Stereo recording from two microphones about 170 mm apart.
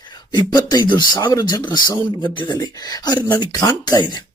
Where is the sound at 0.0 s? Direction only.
25° left (ahead or behind).